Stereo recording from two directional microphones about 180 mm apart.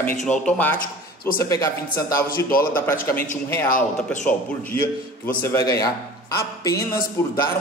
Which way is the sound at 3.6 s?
50° left (ahead or behind).